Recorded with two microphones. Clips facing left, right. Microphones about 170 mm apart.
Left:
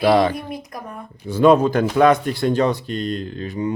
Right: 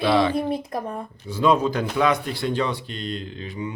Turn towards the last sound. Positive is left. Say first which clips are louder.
# left 6 dB
turn(degrees=45)  # may be behind; listen again after turning